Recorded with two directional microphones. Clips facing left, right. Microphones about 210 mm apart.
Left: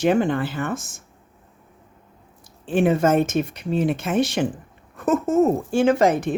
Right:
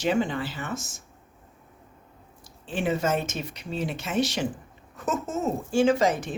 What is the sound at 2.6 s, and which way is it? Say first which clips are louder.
Speech: left 8 dB; 55° left (ahead or behind).